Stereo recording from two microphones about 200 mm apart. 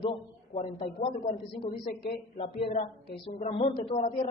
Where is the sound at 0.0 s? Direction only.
30° left (ahead or behind).